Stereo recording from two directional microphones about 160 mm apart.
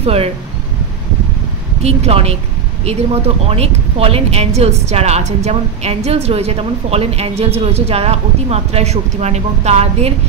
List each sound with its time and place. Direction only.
0.0 s speech: 40° right (ahead or behind)
1.8 s a woman's voice: 40° right (ahead or behind)